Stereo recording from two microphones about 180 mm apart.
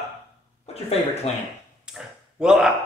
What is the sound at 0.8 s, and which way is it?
Speech, 35° left (ahead or behind).